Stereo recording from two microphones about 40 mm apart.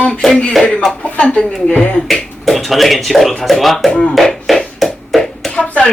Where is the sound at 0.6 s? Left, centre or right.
Centre.